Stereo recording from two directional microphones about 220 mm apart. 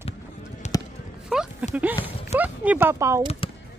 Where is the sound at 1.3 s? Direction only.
5° right (ahead or behind).